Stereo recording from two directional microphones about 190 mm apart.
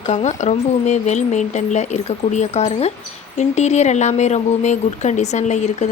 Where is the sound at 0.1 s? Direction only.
35° left (ahead or behind).